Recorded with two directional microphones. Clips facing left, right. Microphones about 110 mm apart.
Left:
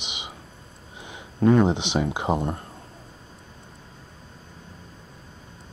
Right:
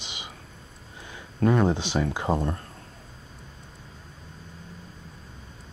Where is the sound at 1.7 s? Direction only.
20° left (ahead or behind).